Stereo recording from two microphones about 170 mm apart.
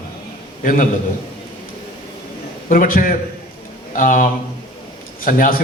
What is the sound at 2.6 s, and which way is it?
A man's voice, 55° left (ahead or behind).